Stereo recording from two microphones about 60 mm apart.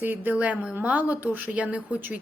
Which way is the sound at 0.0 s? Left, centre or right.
Right.